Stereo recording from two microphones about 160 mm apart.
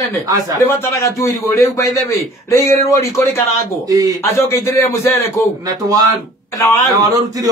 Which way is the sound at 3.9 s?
25° right (ahead or behind).